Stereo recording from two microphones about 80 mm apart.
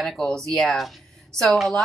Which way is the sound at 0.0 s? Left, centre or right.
Centre.